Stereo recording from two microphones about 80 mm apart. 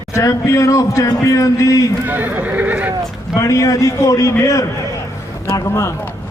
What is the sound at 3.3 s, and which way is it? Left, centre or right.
A man's voice, left.